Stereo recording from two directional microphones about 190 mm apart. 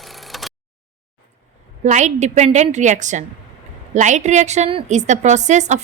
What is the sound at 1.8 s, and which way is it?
A woman's voice, 40° right (ahead or behind).